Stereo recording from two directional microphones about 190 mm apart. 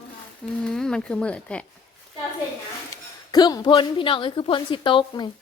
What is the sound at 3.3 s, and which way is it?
A woman's voice, 20° left (ahead or behind).